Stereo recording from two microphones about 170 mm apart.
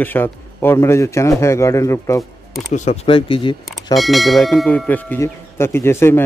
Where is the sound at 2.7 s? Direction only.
40° left (ahead or behind).